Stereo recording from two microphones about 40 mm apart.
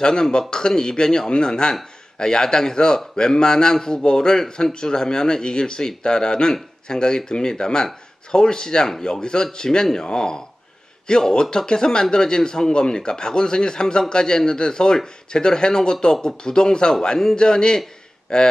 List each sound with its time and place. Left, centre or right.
0.0 s a man's voice: centre